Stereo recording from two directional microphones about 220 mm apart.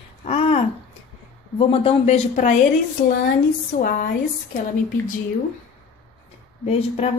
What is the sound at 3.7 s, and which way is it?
Speech, 35° left (ahead or behind).